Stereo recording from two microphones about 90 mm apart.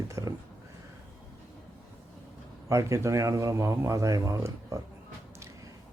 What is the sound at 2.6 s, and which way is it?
Speech, 35° right (ahead or behind).